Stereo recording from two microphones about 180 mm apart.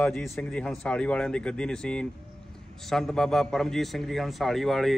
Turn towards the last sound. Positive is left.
turn(degrees=0)  # may be behind; listen again after turning